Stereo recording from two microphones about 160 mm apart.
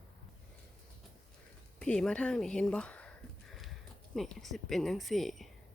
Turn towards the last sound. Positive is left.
turn(degrees=0)  # may be behind; listen again after turning